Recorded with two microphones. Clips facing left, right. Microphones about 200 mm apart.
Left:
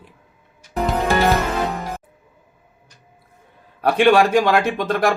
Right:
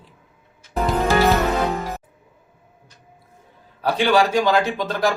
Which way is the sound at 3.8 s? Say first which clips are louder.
Left 4 dB; 60° left (ahead or behind).